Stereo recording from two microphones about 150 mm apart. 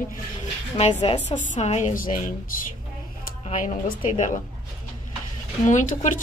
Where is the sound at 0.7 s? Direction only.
50° left (ahead or behind).